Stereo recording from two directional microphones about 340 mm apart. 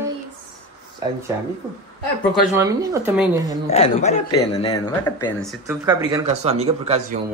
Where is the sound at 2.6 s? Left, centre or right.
Centre.